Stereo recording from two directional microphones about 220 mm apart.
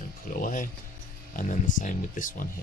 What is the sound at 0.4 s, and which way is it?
Music, 35° left (ahead or behind).